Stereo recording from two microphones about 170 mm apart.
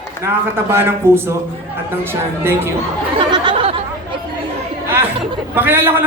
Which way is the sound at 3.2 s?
30° right (ahead or behind).